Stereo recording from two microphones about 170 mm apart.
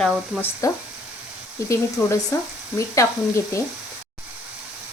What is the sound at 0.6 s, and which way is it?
Speech, 20° left (ahead or behind).